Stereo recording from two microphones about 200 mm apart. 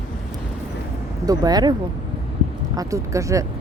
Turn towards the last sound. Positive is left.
turn(degrees=-15)  # may be behind; listen again after turning